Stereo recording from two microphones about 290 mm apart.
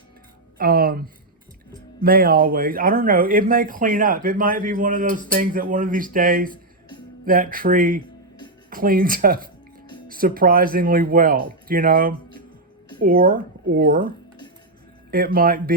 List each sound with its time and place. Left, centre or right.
0.6 s speech: right
15.1 s speech: right